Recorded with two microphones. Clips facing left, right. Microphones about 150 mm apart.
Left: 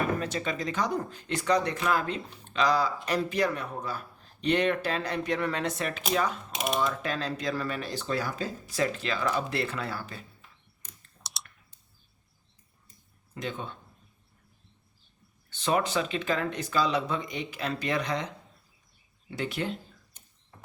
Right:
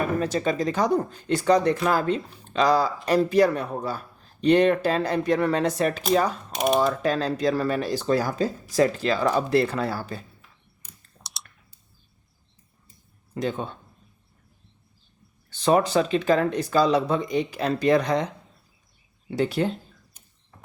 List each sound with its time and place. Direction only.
0.2 s speech: 40° right (ahead or behind)
10.8 s clicking: centre (ahead or behind)
13.3 s speech: 40° right (ahead or behind)
15.4 s speech: 40° right (ahead or behind)
19.3 s speech: 35° right (ahead or behind)